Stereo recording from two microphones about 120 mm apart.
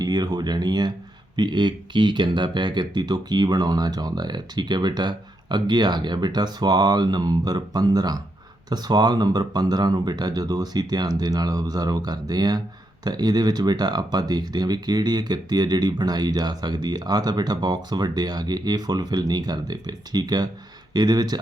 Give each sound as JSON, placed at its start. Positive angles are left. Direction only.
{"t": 0.0, "sound": "speech", "side_deg": -35}